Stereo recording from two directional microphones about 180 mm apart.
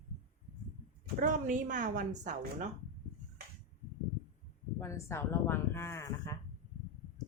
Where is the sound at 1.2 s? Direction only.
45° right (ahead or behind).